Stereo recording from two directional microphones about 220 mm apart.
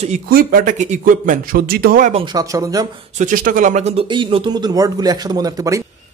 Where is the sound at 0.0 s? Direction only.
35° right (ahead or behind).